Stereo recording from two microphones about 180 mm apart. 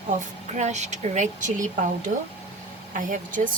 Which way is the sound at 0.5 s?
40° right (ahead or behind).